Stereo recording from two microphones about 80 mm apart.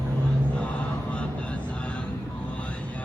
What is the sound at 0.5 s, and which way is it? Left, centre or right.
Music, centre.